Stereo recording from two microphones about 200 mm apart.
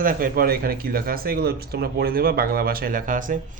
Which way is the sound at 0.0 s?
45° right (ahead or behind).